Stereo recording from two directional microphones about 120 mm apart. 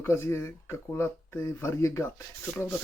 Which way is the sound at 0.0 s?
20° left (ahead or behind).